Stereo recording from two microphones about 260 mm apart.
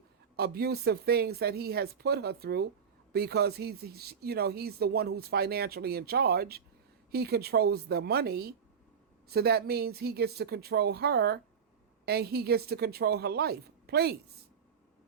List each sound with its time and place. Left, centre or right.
0.3 s speech: right